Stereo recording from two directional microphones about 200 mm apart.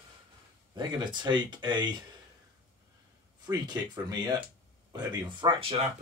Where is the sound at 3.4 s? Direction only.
20° right (ahead or behind).